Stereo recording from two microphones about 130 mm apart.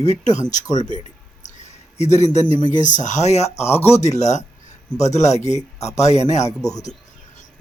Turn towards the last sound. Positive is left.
turn(degrees=65)  # may be behind; listen again after turning